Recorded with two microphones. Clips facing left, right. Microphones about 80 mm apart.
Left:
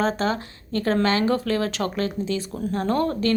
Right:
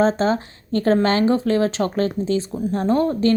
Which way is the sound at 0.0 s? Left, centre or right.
Right.